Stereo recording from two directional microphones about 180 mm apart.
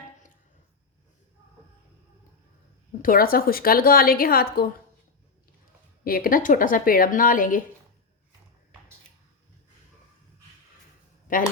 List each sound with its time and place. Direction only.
3.0 s a woman's voice: 50° left (ahead or behind)
6.1 s a woman's voice: 50° left (ahead or behind)
11.3 s speech: 50° left (ahead or behind)